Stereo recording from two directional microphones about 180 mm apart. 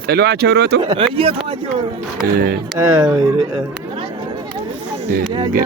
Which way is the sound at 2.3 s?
60° right (ahead or behind).